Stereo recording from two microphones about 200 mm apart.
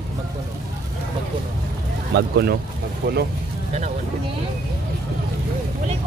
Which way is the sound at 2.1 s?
55° right (ahead or behind).